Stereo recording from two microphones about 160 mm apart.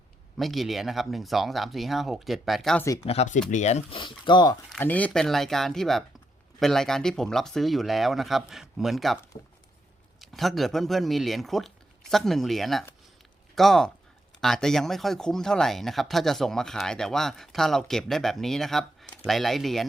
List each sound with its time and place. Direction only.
0.3 s speech: centre (ahead or behind)
3.1 s speech: 40° left (ahead or behind)
4.8 s speech: 10° left (ahead or behind)
10.2 s speech: centre (ahead or behind)